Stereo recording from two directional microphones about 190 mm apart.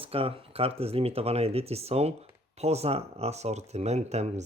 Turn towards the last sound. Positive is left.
turn(degrees=-35)  # may be behind; listen again after turning